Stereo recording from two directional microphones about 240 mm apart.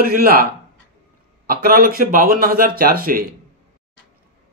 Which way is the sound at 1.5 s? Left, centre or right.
Right.